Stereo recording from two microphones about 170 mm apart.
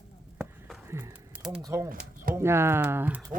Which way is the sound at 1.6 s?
15° right (ahead or behind).